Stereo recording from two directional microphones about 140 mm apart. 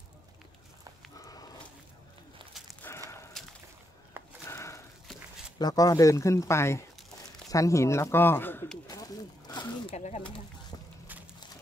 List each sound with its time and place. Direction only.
1.1 s dog: 25° left (ahead or behind)
2.8 s walk: 20° left (ahead or behind)
4.2 s a sound: 15° right (ahead or behind)
4.5 s a sound: 20° left (ahead or behind)
5.6 s speech: 25° left (ahead or behind)
8.8 s speech: 25° left (ahead or behind)
9.9 s speech: 55° left (ahead or behind)